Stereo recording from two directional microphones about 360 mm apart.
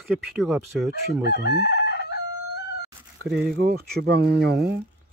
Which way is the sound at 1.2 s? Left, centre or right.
Left.